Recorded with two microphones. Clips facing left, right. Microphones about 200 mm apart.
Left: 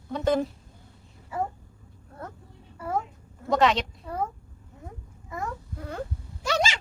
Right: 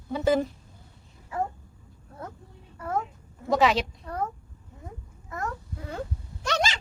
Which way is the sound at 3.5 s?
5° right (ahead or behind).